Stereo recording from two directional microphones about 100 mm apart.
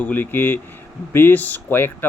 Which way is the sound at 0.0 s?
20° left (ahead or behind).